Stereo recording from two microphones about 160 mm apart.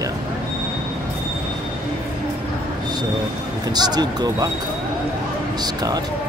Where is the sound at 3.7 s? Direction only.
25° right (ahead or behind).